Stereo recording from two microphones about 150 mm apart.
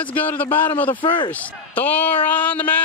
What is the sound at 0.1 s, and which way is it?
Speech, 10° left (ahead or behind).